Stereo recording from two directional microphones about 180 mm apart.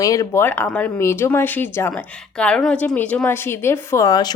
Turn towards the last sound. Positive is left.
turn(degrees=20)  # may be behind; listen again after turning